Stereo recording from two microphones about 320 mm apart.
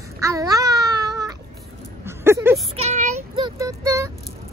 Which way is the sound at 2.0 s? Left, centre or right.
Centre.